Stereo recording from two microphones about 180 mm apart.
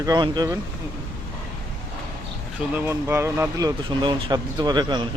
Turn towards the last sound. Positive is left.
turn(degrees=-25)  # may be behind; listen again after turning